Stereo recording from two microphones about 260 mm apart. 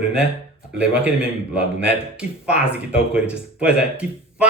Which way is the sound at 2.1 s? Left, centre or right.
Centre.